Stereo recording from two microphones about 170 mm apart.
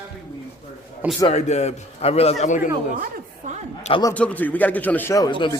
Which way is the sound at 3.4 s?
45° right (ahead or behind).